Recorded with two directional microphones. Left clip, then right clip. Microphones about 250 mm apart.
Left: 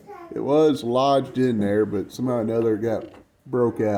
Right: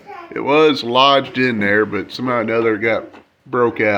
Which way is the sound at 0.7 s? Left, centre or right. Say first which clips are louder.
Right 8 dB; right.